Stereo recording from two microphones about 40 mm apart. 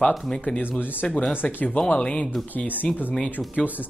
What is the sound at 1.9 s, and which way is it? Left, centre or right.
Speech, left.